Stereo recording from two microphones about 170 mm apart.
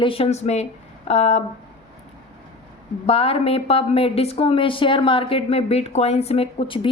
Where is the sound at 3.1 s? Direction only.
35° left (ahead or behind).